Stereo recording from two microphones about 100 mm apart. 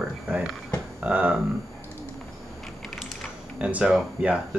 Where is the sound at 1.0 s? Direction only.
15° right (ahead or behind).